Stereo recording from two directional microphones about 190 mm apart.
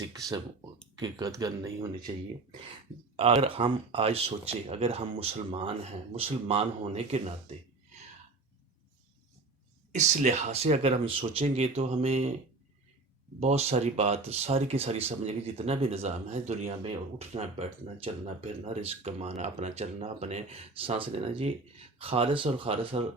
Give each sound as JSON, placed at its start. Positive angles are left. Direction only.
{"t": 0.9, "sound": "speech", "side_deg": -20}
{"t": 3.2, "sound": "speech", "side_deg": -30}
{"t": 9.9, "sound": "speech", "side_deg": -40}
{"t": 13.4, "sound": "speech", "side_deg": -35}